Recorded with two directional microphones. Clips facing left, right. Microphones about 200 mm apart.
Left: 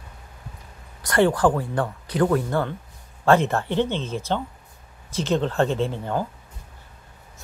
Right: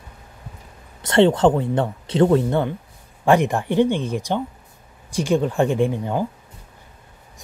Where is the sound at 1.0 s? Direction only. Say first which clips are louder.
Right 4 dB; 25° right (ahead or behind).